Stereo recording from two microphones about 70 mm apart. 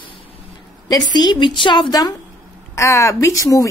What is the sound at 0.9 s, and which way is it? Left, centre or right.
A woman's voice, left.